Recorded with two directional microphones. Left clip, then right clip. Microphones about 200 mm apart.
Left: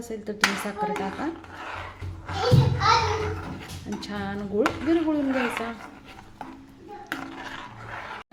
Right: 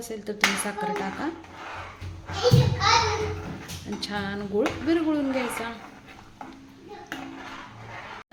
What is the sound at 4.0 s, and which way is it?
Dishes, 5° left (ahead or behind).